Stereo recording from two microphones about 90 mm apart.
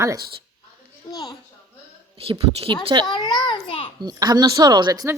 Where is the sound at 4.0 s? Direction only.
50° right (ahead or behind).